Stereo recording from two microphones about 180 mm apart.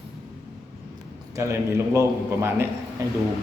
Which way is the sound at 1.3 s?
15° right (ahead or behind).